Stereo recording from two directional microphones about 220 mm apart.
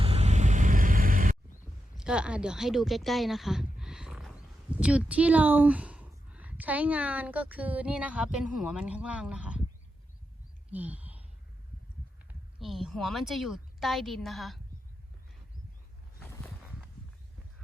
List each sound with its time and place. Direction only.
0.0 s vehicle: 30° right (ahead or behind)
2.0 s speech: 5° right (ahead or behind)
10.7 s a sound: 5° right (ahead or behind)
12.5 s speech: centre (ahead or behind)